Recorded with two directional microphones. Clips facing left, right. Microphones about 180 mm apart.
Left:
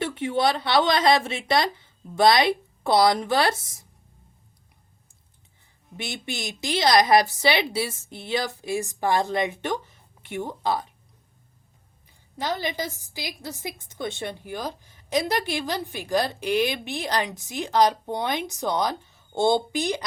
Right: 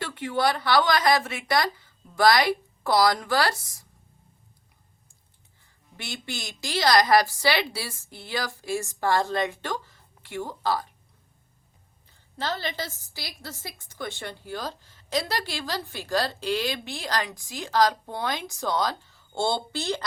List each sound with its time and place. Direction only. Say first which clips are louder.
0.0 s a woman's voice: left 2 dB; 25° left (ahead or behind)
6.0 s a woman's voice: left 4 dB; 20° left (ahead or behind)
12.4 s a woman's voice: left 3 dB; 15° left (ahead or behind)